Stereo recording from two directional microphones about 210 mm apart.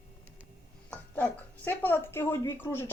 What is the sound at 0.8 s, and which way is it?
Speech, 5° left (ahead or behind).